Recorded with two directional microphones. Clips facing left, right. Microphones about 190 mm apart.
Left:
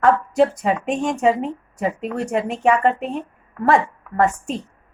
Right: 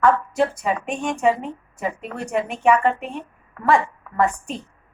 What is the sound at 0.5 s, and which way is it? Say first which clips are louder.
Speech: left 4 dB; 40° left (ahead or behind).